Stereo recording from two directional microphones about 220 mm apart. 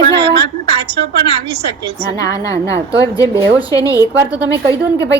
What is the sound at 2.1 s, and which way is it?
A woman's voice, 15° left (ahead or behind).